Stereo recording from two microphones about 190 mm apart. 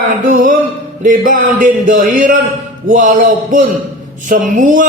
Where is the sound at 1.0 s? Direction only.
45° right (ahead or behind).